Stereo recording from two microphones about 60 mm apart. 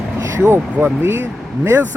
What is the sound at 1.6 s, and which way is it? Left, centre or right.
Speech, right.